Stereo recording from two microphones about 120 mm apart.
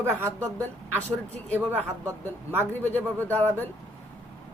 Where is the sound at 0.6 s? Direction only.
15° left (ahead or behind).